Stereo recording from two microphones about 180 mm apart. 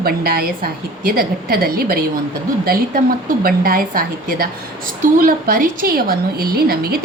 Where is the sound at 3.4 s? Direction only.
55° right (ahead or behind).